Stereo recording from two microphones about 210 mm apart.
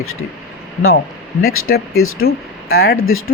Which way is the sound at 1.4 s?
85° left.